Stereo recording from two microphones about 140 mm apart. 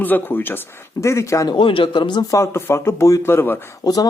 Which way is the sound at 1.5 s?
40° left (ahead or behind).